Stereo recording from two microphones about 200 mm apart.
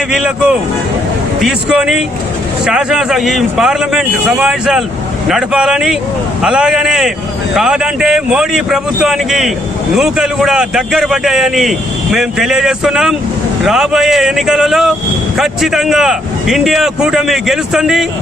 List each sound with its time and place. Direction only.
0.1 s a man's voice: 5° right (ahead or behind)